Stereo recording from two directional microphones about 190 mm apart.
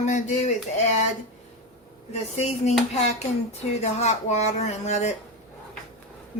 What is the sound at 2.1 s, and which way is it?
Speech, 35° left (ahead or behind).